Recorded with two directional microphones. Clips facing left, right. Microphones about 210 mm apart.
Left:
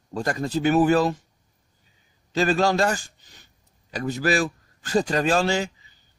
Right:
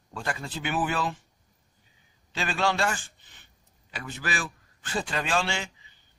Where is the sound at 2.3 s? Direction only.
40° left (ahead or behind).